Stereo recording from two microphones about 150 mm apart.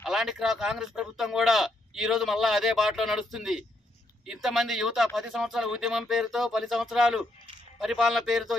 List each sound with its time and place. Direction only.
0.0 s speech: centre (ahead or behind)